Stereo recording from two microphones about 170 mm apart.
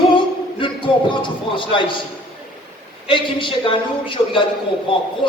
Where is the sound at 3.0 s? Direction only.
30° left (ahead or behind).